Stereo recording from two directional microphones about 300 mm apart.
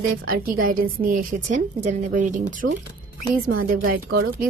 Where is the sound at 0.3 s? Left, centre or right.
Right.